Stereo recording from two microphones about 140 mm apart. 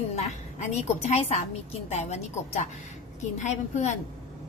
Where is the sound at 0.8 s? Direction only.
55° left (ahead or behind).